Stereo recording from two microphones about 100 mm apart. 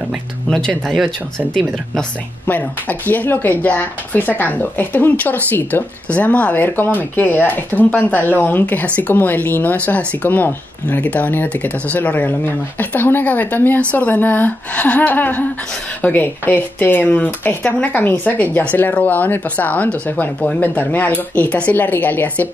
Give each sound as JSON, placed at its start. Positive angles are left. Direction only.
{"t": 0.5, "sound": "speech", "side_deg": 5}
{"t": 2.4, "sound": "speech", "side_deg": 15}